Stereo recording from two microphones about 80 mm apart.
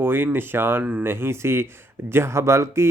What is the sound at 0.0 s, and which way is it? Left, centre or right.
Speech, right.